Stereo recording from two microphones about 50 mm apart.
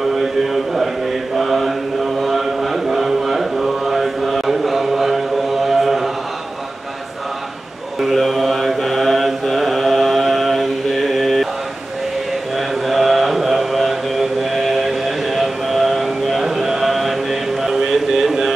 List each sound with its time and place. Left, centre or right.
0.1 s a sound: centre
1.3 s mantra: centre
2.1 s chant: centre
8.0 s mantra: centre
12.5 s mantra: centre
14.4 s music: centre